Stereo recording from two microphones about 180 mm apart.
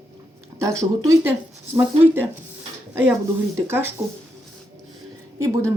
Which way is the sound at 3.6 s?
15° right (ahead or behind).